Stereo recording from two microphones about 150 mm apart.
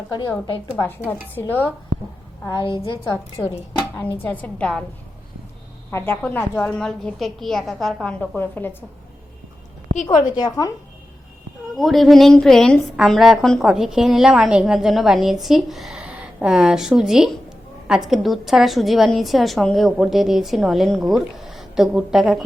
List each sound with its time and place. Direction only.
0.8 s speech: 10° left (ahead or behind)
2.5 s a woman's voice: 30° left (ahead or behind)
3.0 s speech: 15° left (ahead or behind)
5.9 s a woman's voice: 15° left (ahead or behind)
8.4 s speech: 15° left (ahead or behind)
9.9 s a woman's voice: 55° left (ahead or behind)
10.2 s a woman's voice: 25° left (ahead or behind)
11.8 s a woman's voice: centre (ahead or behind)